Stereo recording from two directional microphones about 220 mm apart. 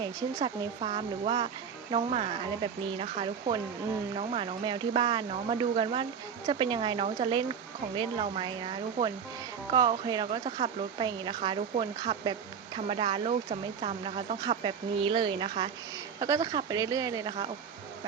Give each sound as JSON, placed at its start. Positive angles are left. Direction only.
{"t": 0.0, "sound": "speech", "side_deg": -20}